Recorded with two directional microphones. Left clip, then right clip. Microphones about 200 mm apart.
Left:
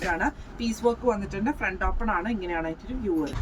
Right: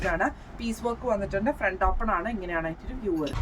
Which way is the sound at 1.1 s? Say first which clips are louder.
Right 3 dB; 15° right (ahead or behind).